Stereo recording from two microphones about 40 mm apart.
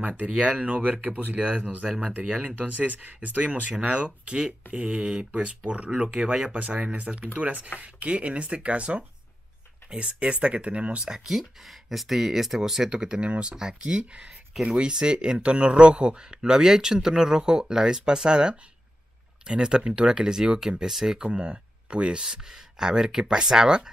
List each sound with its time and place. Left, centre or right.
0.4 s speech: right
1.9 s speech: right
2.4 s speech: right
3.8 s speech: right
11.1 s speech: centre
12.9 s speech: right
21.4 s speech: right